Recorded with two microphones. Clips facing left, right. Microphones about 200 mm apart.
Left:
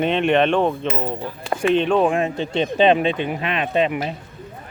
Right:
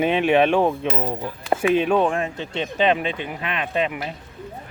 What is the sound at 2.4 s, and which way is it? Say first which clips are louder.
Speech: left 5 dB; 30° left (ahead or behind).